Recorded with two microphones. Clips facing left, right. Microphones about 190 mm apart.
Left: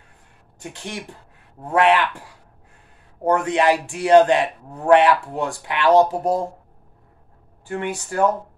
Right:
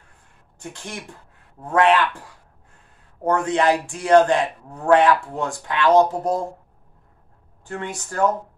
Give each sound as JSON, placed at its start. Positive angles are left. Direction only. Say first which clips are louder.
{"t": 0.6, "sound": "a man's voice", "louder": "left 2 dB", "side_deg": 15}
{"t": 3.3, "sound": "a man's voice", "louder": "left 1 dB", "side_deg": 15}
{"t": 7.6, "sound": "a man's voice", "louder": "left 4 dB", "side_deg": 15}